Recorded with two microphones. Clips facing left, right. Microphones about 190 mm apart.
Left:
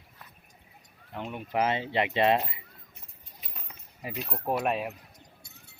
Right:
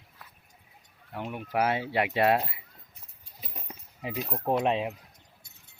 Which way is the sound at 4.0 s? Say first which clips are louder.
Right 3 dB; 15° right (ahead or behind).